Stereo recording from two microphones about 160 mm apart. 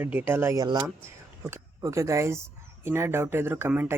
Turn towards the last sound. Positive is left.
turn(degrees=-10)  # may be behind; listen again after turning